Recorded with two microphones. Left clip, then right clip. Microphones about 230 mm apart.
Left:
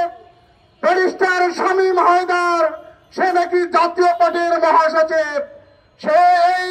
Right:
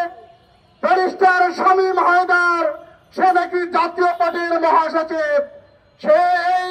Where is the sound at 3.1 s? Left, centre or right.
Left.